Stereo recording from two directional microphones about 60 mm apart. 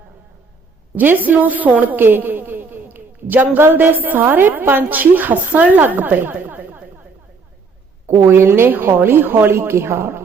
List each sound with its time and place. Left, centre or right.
0.9 s a woman's voice: right
3.6 s a woman's voice: right
8.0 s a woman's voice: right